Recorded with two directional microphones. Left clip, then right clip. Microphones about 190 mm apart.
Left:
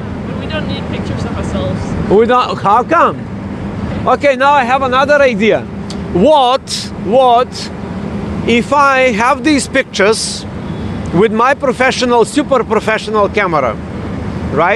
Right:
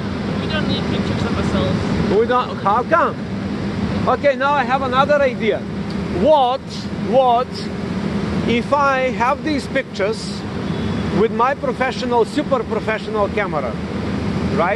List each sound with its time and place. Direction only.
2.1 s speech: 45° left (ahead or behind)
8.5 s speech: 40° left (ahead or behind)
11.1 s speech: 50° left (ahead or behind)